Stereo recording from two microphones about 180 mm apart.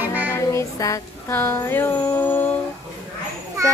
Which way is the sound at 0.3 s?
15° left (ahead or behind).